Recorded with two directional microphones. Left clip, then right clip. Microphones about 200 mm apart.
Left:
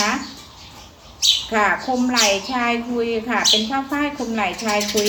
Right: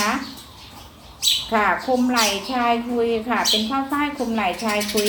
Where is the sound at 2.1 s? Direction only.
15° left (ahead or behind).